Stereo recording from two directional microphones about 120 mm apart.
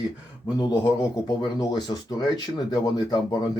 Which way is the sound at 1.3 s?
35° left (ahead or behind).